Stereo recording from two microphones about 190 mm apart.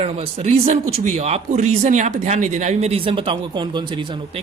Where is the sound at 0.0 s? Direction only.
30° right (ahead or behind).